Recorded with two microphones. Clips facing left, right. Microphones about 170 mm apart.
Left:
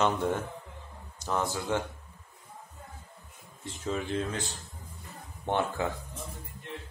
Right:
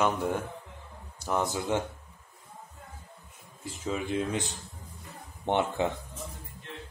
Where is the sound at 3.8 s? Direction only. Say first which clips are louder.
Right 1 dB; 10° right (ahead or behind).